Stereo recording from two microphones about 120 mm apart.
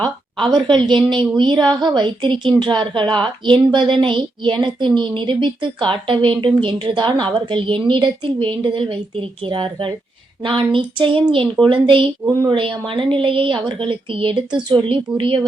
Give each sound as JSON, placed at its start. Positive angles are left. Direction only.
{"t": 0.4, "sound": "a woman's voice", "side_deg": -40}
{"t": 12.2, "sound": "speech", "side_deg": -20}
{"t": 12.5, "sound": "a woman's voice", "side_deg": -45}